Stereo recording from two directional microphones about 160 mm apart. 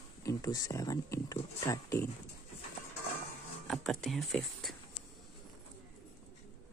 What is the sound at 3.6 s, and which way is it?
Speech, 5° left (ahead or behind).